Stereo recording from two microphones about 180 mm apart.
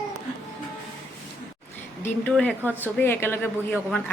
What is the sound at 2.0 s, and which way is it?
A man's voice, 10° left (ahead or behind).